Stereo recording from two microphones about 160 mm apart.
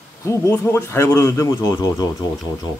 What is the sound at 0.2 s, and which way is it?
A man's voice, 20° left (ahead or behind).